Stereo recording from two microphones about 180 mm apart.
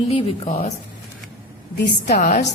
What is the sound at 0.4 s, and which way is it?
Speech, 40° left (ahead or behind).